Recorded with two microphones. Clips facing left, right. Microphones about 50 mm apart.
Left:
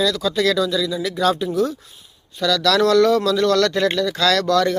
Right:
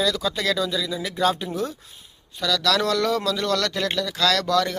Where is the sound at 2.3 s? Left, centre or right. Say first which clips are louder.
Left 5 dB; centre.